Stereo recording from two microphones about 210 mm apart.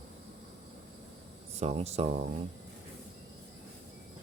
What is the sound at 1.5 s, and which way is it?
Speech, 30° right (ahead or behind).